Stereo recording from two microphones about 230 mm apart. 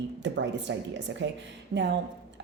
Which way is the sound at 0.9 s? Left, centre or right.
Right.